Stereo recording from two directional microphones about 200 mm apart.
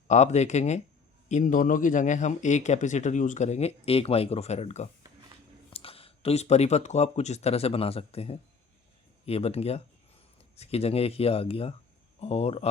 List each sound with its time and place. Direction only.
0.1 s speech: 35° left (ahead or behind)